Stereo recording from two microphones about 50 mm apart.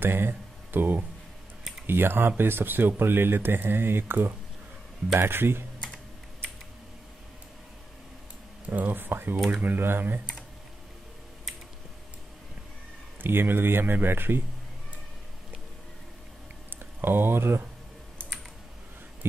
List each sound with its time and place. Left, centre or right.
0.0 s speech: right
8.6 s speech: right
9.5 s speech: right
9.8 s speech: right
13.2 s speech: right
17.0 s speech: right